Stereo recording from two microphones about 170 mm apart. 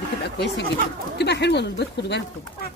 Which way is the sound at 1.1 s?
85° left.